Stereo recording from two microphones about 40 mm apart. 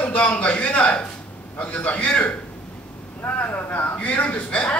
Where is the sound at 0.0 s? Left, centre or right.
Left.